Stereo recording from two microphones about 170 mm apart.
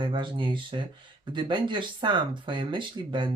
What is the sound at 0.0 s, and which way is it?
Speech, 30° right (ahead or behind).